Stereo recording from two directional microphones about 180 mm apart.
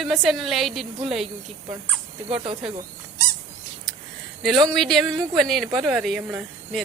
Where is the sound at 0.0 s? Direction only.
Centre (ahead or behind).